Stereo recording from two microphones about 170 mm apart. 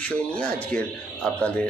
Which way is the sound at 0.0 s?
5° left (ahead or behind).